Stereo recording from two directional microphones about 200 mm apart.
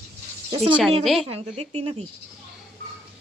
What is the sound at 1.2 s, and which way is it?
Speech, 30° right (ahead or behind).